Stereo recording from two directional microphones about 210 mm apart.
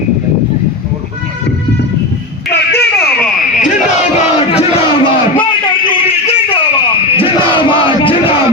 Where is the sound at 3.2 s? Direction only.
40° left (ahead or behind).